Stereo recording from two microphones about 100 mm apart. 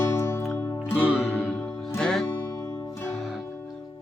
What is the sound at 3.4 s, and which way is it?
Music, 20° left (ahead or behind).